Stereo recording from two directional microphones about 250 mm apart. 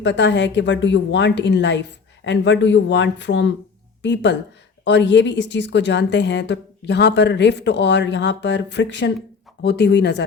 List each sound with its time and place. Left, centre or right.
0.0 s a woman's voice: left